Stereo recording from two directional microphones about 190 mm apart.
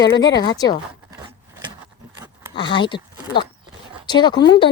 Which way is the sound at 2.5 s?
25° left (ahead or behind).